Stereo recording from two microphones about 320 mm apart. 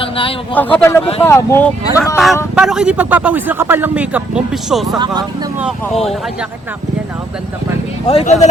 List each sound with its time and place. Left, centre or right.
0.0 s a sound: centre
0.5 s speech: centre
4.9 s speech: centre
5.6 s speech: centre
8.0 s speech: centre